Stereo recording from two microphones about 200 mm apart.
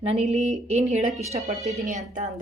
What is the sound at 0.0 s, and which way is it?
Speech, 30° right (ahead or behind).